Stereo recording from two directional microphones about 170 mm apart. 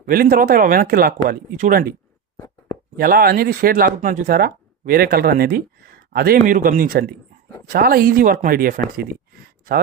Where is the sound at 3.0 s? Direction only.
60° right (ahead or behind).